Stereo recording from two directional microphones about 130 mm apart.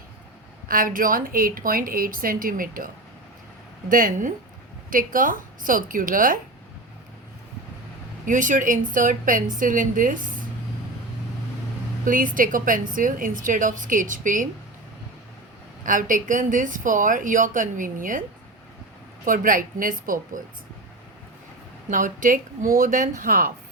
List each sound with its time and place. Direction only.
0.7 s a woman's voice: 90° right
8.2 s a woman's voice: 80° right
12.0 s a woman's voice: 90° right
15.8 s a woman's voice: 90° right
19.2 s a woman's voice: 90° right
21.8 s a woman's voice: 90° right